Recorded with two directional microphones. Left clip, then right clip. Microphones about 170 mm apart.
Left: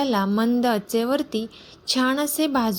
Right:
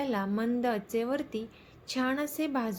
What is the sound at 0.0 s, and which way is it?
A woman's voice, 40° left (ahead or behind).